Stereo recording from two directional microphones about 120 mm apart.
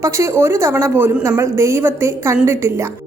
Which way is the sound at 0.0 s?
25° right (ahead or behind).